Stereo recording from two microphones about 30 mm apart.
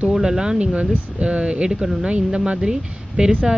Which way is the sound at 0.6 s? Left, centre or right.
Right.